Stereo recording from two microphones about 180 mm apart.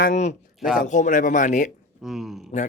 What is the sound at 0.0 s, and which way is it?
Speech, 40° left (ahead or behind).